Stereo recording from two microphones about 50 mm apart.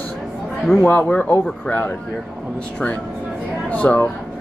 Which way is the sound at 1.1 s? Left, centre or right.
Left.